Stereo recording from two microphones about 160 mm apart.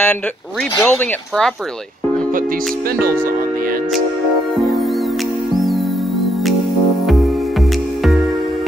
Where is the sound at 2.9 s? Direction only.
65° right (ahead or behind).